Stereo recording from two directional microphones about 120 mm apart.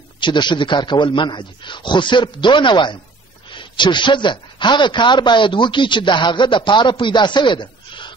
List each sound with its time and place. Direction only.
0.2 s speech: 40° left (ahead or behind)